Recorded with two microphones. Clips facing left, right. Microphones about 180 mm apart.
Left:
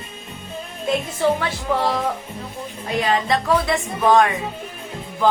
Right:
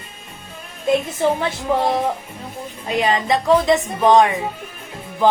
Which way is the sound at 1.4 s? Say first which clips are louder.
Right 2 dB; 20° right (ahead or behind).